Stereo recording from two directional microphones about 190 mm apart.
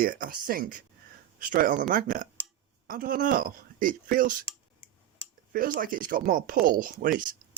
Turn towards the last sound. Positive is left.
turn(degrees=-45)  # may be behind; listen again after turning